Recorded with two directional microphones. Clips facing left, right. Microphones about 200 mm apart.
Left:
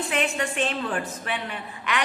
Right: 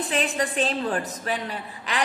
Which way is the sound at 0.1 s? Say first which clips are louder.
Right 1 dB; 35° right (ahead or behind).